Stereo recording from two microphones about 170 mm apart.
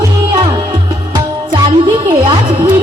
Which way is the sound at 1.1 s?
30° right (ahead or behind).